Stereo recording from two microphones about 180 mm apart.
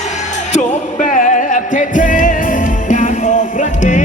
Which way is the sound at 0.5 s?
45° left (ahead or behind).